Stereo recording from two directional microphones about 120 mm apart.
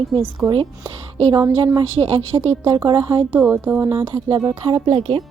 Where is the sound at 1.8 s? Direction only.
45° right (ahead or behind).